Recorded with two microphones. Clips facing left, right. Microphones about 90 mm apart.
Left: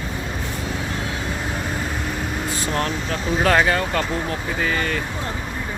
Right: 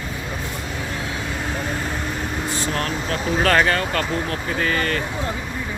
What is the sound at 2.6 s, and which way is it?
Speech, 25° left (ahead or behind).